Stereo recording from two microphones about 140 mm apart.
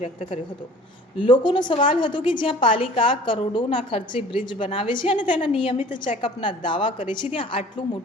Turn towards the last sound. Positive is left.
turn(degrees=40)  # may be behind; listen again after turning